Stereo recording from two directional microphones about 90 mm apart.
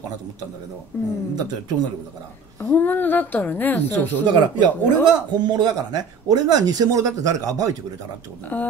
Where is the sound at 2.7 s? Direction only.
20° left (ahead or behind).